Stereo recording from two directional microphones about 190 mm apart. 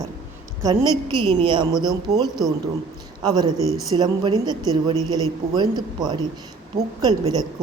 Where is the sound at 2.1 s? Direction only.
35° right (ahead or behind).